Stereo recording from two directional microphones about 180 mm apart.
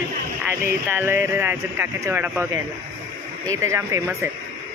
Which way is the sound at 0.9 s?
10° right (ahead or behind).